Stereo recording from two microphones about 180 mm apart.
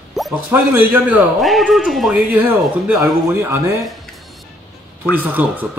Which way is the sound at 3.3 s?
15° right (ahead or behind).